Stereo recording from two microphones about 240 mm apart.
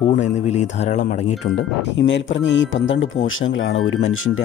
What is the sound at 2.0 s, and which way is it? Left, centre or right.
Speech, left.